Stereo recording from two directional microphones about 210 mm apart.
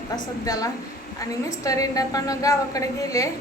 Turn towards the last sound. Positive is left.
turn(degrees=15)  # may be behind; listen again after turning